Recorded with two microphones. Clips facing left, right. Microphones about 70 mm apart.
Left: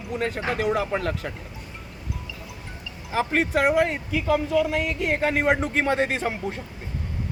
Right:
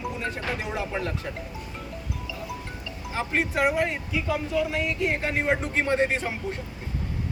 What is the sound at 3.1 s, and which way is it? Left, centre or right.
Speech, left.